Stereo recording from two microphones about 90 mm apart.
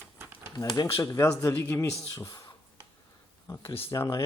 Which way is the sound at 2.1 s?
40° left (ahead or behind).